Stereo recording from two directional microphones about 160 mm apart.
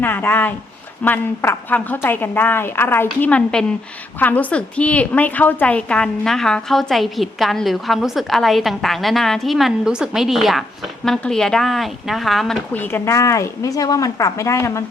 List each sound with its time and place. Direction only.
0.0 s a woman's voice: 10° left (ahead or behind)